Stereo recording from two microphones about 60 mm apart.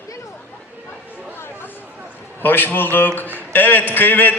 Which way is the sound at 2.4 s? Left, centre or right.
Left.